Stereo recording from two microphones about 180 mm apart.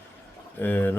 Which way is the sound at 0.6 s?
10° left (ahead or behind).